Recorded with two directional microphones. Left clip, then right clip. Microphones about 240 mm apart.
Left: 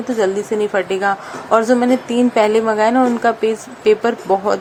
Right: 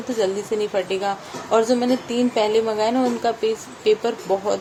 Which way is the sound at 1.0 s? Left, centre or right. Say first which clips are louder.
Left 7 dB; centre.